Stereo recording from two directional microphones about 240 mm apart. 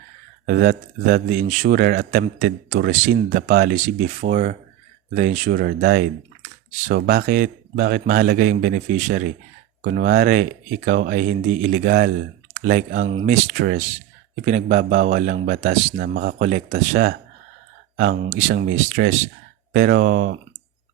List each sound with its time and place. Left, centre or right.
0.4 s a man's voice: right
16.0 s a man's voice: right
17.9 s a man's voice: right